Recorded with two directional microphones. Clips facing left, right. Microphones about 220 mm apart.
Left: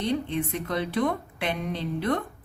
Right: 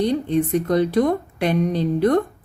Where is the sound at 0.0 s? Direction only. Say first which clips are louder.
Right 8 dB; 40° right (ahead or behind).